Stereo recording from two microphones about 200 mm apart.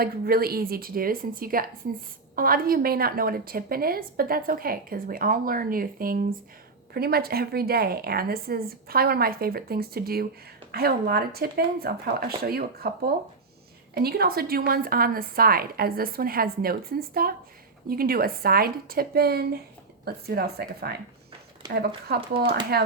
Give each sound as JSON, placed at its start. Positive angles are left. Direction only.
{"t": 0.0, "sound": "a woman's voice", "side_deg": -50}